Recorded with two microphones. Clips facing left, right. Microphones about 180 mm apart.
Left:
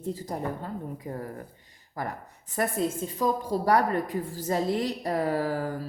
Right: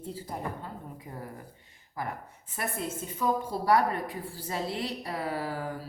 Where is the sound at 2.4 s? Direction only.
40° left (ahead or behind).